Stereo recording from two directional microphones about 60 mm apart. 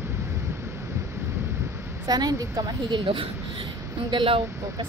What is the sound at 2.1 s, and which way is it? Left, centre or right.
Speech, right.